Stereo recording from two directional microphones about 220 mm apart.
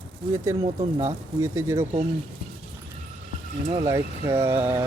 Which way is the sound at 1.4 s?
10° right (ahead or behind).